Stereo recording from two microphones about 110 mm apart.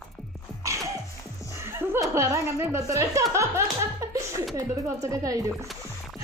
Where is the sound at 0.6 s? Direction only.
30° right (ahead or behind).